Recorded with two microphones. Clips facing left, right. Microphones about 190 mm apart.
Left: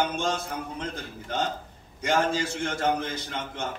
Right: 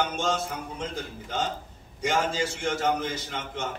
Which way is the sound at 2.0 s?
55° left (ahead or behind).